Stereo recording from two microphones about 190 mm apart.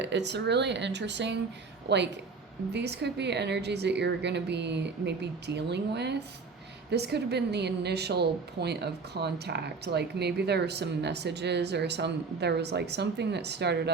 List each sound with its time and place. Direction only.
0.0 s a woman's voice: 65° right (ahead or behind)